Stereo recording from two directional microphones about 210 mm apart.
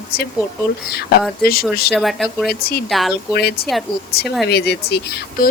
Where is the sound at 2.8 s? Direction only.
Centre (ahead or behind).